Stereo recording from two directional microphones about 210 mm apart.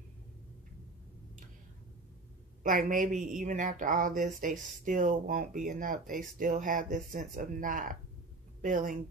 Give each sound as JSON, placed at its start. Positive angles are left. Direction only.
{"t": 2.6, "sound": "a woman's voice", "side_deg": -40}